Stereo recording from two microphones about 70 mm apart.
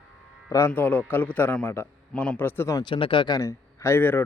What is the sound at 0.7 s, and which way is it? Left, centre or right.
A man's voice, left.